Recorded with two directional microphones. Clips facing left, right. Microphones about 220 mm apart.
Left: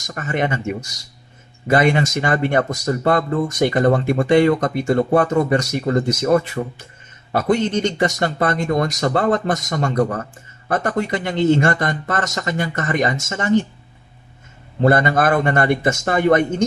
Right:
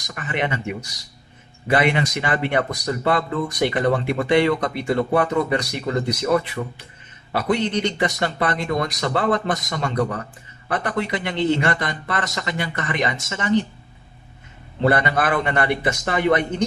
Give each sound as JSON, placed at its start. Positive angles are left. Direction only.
{"t": 0.0, "sound": "speech", "side_deg": 45}
{"t": 14.8, "sound": "speech", "side_deg": 45}